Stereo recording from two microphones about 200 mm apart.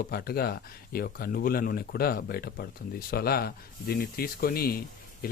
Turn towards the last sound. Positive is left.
turn(degrees=50)  # may be behind; listen again after turning